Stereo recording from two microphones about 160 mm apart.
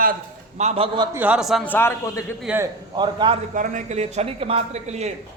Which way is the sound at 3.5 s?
50° right (ahead or behind).